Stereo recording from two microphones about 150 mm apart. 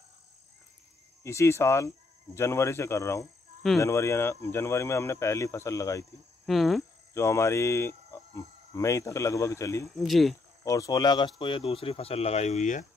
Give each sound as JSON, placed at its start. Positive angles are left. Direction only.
{"t": 1.2, "sound": "speech", "side_deg": 20}
{"t": 6.4, "sound": "speech", "side_deg": 0}
{"t": 7.2, "sound": "speech", "side_deg": 20}
{"t": 9.9, "sound": "speech", "side_deg": 0}
{"t": 10.6, "sound": "speech", "side_deg": 20}